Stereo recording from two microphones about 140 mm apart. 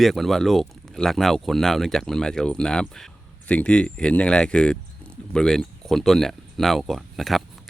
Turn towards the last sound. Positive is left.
turn(degrees=0)  # may be behind; listen again after turning